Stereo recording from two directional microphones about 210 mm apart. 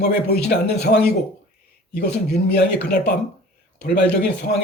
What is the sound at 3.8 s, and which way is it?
Speech, 50° left (ahead or behind).